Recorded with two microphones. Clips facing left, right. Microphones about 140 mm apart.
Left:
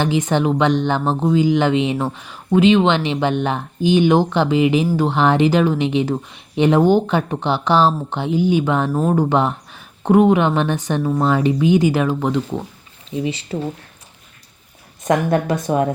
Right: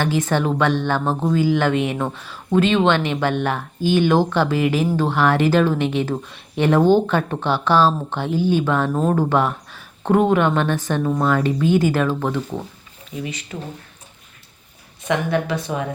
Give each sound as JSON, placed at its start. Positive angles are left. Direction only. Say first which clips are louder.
{"t": 0.0, "sound": "speech", "louder": "left 2 dB", "side_deg": 15}
{"t": 8.9, "sound": "speech", "louder": "left 1 dB", "side_deg": 5}
{"t": 9.1, "sound": "speech", "louder": "left 2 dB", "side_deg": 20}
{"t": 13.1, "sound": "speech", "louder": "left 7 dB", "side_deg": 25}
{"t": 15.0, "sound": "a woman's voice", "louder": "left 4 dB", "side_deg": 45}